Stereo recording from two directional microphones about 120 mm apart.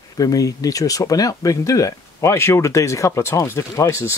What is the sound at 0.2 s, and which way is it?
Speech, 30° left (ahead or behind).